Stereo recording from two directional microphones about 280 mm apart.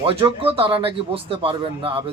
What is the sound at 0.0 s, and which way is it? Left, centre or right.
Speech, centre.